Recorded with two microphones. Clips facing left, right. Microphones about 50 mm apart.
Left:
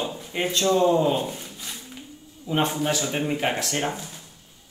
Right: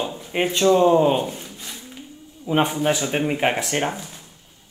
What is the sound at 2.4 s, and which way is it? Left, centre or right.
Speech, right.